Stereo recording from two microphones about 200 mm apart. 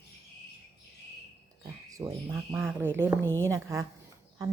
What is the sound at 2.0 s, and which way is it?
A woman's voice, 15° right (ahead or behind).